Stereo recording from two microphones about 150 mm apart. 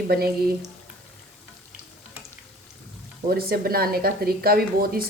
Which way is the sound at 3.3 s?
90° right.